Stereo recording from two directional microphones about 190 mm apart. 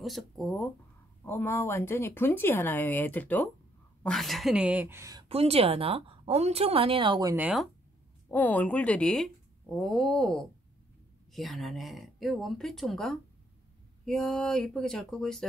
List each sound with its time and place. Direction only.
0.0 s speech: centre (ahead or behind); by 5.2 s 15° right (ahead or behind)
5.3 s a woman's voice: 30° right (ahead or behind)
7.3 s speech: 5° right (ahead or behind)
8.3 s speech: 10° left (ahead or behind)